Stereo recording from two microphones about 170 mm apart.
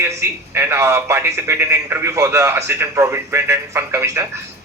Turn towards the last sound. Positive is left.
turn(degrees=-15)  # may be behind; listen again after turning